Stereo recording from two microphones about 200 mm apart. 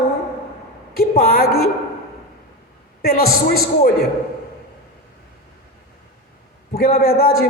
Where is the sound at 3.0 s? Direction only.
50° left (ahead or behind).